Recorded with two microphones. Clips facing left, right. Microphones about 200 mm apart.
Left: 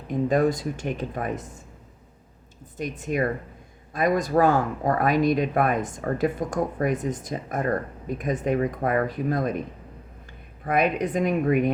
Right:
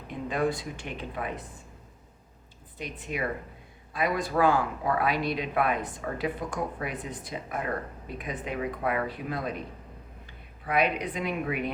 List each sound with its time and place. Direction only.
0.1 s speech: 45° left (ahead or behind)
2.7 s speech: 45° left (ahead or behind)
10.6 s speech: 45° left (ahead or behind)